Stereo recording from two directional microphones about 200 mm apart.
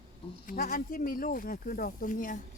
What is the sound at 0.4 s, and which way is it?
Speech, 40° left (ahead or behind).